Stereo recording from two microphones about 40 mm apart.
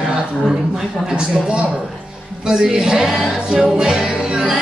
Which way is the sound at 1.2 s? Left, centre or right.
Right.